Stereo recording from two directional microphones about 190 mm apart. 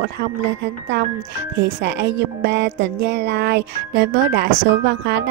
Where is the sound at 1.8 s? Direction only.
65° right (ahead or behind).